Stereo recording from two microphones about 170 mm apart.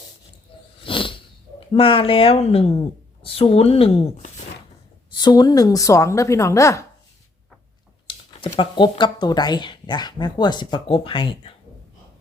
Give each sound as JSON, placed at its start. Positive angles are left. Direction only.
{"t": 0.5, "sound": "a sound", "side_deg": 30}
{"t": 1.5, "sound": "a woman's voice", "side_deg": 30}
{"t": 5.1, "sound": "a woman's voice", "side_deg": 25}
{"t": 8.5, "sound": "speech", "side_deg": 25}